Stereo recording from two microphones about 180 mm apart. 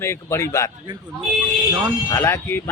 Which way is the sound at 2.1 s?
15° left (ahead or behind).